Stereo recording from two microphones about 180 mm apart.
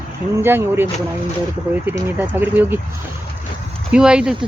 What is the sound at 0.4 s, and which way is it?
Speech, 10° right (ahead or behind).